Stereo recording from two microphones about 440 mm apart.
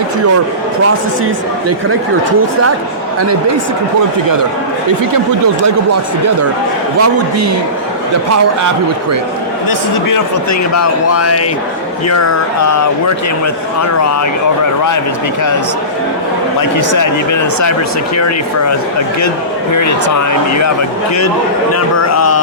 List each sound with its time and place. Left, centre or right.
7.0 s a man's voice: right
9.6 s speech: left
16.6 s speech: left
21.7 s speech: left